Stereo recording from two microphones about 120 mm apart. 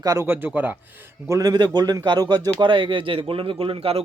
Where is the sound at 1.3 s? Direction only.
30° right (ahead or behind).